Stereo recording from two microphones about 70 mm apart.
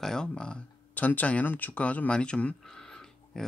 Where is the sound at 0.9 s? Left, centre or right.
Left.